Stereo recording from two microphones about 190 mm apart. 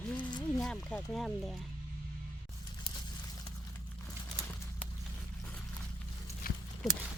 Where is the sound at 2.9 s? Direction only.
25° left (ahead or behind).